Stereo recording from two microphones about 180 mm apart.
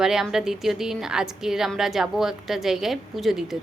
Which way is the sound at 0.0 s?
5° right (ahead or behind).